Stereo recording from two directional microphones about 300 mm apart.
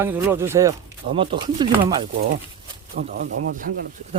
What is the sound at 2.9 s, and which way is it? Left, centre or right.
Speech, right.